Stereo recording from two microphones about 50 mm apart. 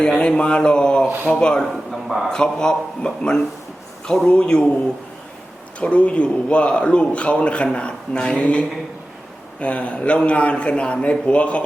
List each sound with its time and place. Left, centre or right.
0.0 s a man's voice: centre
1.7 s speech: centre
2.3 s a man's voice: centre
5.8 s a man's voice: left